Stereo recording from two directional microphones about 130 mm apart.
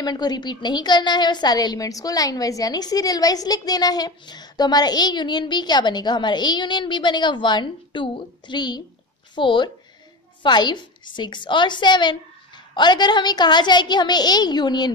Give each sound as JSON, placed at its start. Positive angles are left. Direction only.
{"t": 0.0, "sound": "a woman's voice", "side_deg": 30}